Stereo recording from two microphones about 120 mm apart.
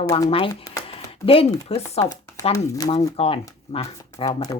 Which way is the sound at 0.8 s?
50° left (ahead or behind).